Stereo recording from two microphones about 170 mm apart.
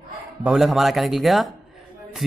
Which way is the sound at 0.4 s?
5° right (ahead or behind).